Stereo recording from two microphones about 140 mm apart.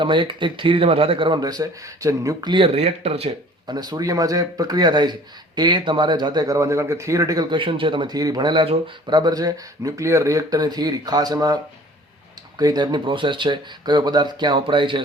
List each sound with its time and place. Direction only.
0.0 s speech: 35° right (ahead or behind)
3.7 s speech: 30° right (ahead or behind)